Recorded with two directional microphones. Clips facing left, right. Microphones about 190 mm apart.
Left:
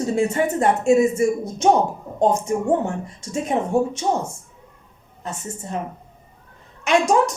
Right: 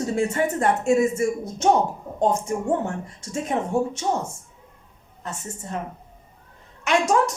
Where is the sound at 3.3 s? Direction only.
15° left (ahead or behind).